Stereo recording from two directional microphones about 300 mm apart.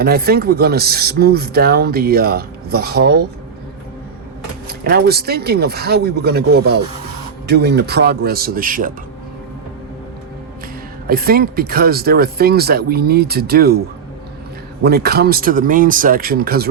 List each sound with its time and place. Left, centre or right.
0.0 s speech: right
4.8 s speech: right
11.0 s speech: right
14.8 s speech: right